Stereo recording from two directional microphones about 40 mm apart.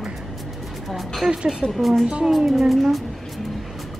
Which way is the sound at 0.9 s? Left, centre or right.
Centre.